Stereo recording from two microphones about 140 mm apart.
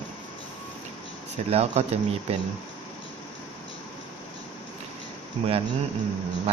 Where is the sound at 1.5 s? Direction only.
50° right (ahead or behind).